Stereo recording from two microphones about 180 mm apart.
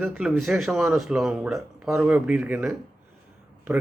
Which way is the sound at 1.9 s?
10° right (ahead or behind).